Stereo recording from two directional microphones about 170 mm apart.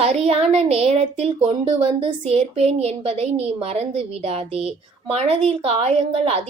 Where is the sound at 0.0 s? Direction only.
35° right (ahead or behind).